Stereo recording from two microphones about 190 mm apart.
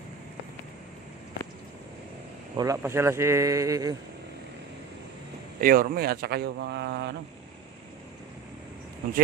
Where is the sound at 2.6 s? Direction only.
15° right (ahead or behind).